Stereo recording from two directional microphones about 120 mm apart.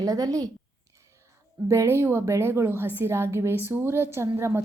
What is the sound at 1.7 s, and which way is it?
Speech, 20° right (ahead or behind).